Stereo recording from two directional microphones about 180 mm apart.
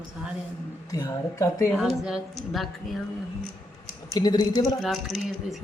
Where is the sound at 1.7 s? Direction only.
Centre (ahead or behind).